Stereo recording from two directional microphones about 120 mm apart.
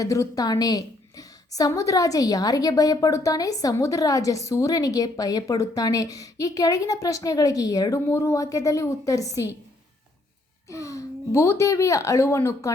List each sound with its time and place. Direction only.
0.0 s a woman's voice: 30° left (ahead or behind)
10.7 s a woman's voice: 25° left (ahead or behind)